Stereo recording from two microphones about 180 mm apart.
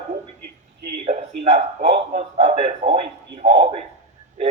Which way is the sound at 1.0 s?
35° right (ahead or behind).